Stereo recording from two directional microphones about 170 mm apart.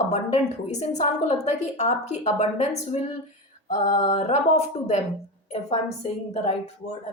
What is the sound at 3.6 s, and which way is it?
Mantra, 45° left (ahead or behind).